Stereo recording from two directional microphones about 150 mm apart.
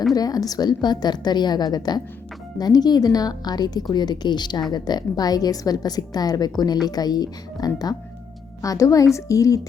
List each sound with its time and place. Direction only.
0.1 s a woman's voice: 25° left (ahead or behind)